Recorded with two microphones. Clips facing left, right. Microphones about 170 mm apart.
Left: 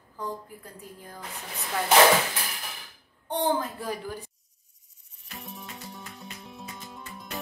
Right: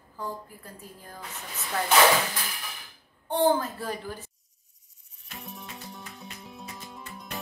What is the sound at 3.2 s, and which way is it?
A woman's voice, 15° left (ahead or behind).